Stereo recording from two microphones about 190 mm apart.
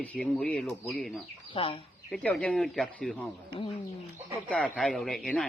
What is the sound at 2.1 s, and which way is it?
Speech, 5° left (ahead or behind).